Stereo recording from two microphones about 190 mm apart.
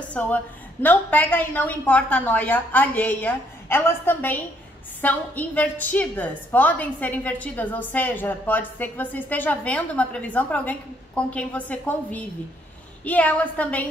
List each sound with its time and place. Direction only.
0.1 s a woman's voice: 5° left (ahead or behind)